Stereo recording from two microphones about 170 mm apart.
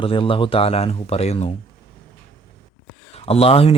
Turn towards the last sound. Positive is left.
turn(degrees=35)  # may be behind; listen again after turning